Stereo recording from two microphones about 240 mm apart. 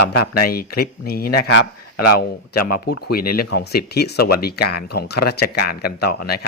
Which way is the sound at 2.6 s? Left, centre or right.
Left.